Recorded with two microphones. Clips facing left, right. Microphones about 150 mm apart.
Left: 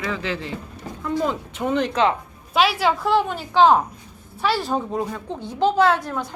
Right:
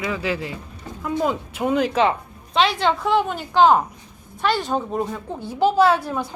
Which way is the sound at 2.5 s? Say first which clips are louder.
Even; 5° left (ahead or behind).